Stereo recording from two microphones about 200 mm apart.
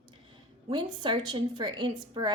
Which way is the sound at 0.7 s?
25° right (ahead or behind).